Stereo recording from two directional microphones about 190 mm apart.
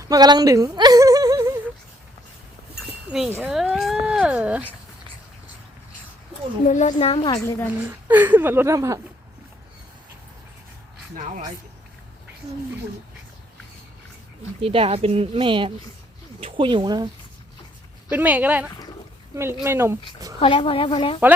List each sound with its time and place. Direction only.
0.0 s whimper: 20° right (ahead or behind)
3.1 s speech: 5° right (ahead or behind)
6.7 s a woman's voice: 40° left (ahead or behind)
7.9 s speech: 10° right (ahead or behind)
14.6 s speech: 30° right (ahead or behind)
18.1 s speech: 10° right (ahead or behind)
20.4 s a woman's voice: 25° left (ahead or behind)